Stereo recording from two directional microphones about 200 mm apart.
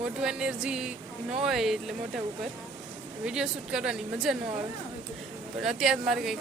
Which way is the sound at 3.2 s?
5° right (ahead or behind).